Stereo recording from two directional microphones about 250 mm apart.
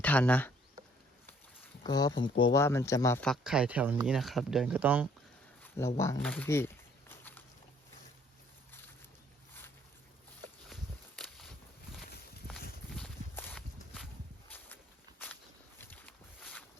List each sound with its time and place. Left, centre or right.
0.0 s speech: centre
1.8 s speech: centre
5.6 s a sound: centre
6.0 s speech: centre
11.2 s a sound: centre
12.9 s clip-clop: centre
15.8 s boat: centre